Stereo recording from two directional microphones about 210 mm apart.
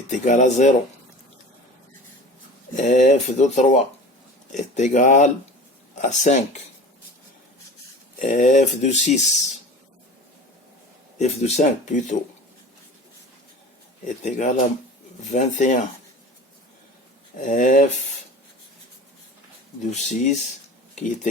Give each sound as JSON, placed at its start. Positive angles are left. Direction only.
{"t": 0.1, "sound": "speech", "side_deg": 35}
{"t": 2.7, "sound": "speech", "side_deg": 35}
{"t": 8.2, "sound": "speech", "side_deg": 35}
{"t": 11.2, "sound": "speech", "side_deg": 30}
{"t": 14.3, "sound": "speech", "side_deg": 35}
{"t": 17.3, "sound": "speech", "side_deg": 40}
{"t": 19.9, "sound": "speech", "side_deg": 35}